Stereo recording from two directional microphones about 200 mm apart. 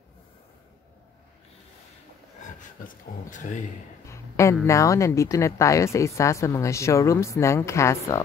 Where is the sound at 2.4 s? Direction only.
40° left (ahead or behind).